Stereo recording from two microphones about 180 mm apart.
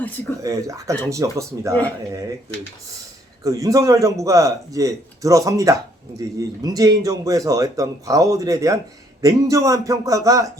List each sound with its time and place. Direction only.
0.4 s a man's voice: 20° right (ahead or behind)
3.4 s a man's voice: 20° right (ahead or behind)